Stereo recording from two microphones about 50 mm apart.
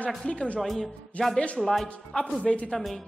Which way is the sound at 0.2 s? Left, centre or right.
Centre.